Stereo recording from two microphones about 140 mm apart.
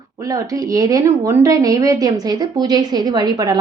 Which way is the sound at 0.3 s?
25° right (ahead or behind).